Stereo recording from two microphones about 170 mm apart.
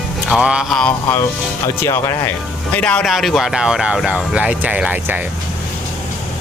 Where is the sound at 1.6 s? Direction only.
15° left (ahead or behind).